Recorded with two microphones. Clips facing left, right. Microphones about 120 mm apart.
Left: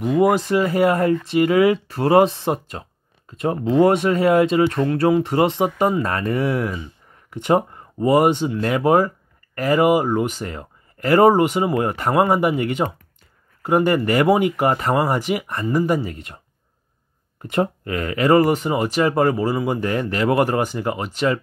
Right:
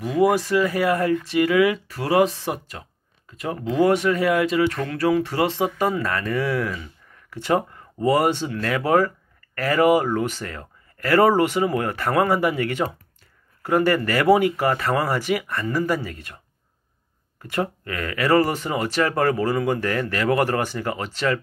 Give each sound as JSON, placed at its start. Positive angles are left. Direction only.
{"t": 0.2, "sound": "speech", "side_deg": 25}
{"t": 17.4, "sound": "speech", "side_deg": 25}